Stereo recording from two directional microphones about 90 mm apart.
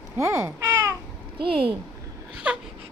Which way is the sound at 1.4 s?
90° right.